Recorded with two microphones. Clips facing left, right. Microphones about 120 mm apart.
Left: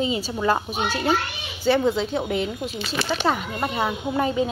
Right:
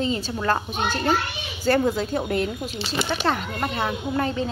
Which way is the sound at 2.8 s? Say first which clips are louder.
Right 1 dB; 20° right (ahead or behind).